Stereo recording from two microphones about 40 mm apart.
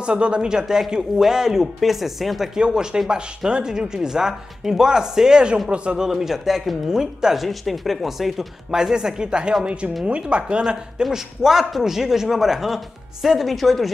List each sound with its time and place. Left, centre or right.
0.0 s speech: right; by 2.5 s centre
2.5 s a man's voice: centre
6.0 s a man's voice: centre
6.9 s a man's voice: centre
7.4 s speech: centre
8.7 s speech: centre
10.6 s a man's voice: centre